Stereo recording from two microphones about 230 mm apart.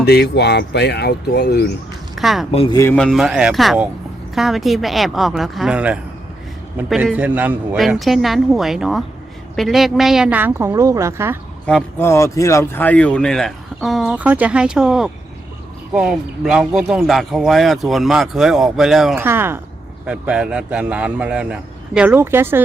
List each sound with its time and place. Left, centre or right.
0.0 s speech: left
2.1 s speech: centre
2.5 s speech: left
2.7 s a woman's voice: centre
11.6 s speech: centre